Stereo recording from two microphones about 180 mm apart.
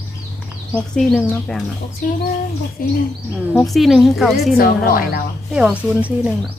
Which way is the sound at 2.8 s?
50° left (ahead or behind).